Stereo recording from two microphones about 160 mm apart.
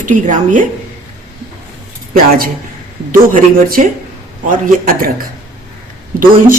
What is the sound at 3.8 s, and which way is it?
Speech, 50° right (ahead or behind).